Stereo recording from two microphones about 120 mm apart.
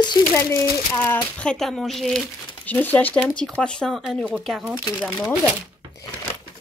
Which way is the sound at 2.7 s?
15° left (ahead or behind).